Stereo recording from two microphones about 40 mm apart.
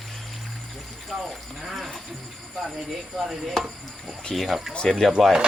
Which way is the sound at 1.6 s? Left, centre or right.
Centre.